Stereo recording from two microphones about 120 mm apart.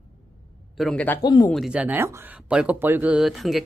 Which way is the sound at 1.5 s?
5° right (ahead or behind).